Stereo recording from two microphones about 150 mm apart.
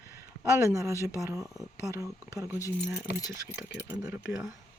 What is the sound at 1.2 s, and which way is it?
Speech, 20° right (ahead or behind).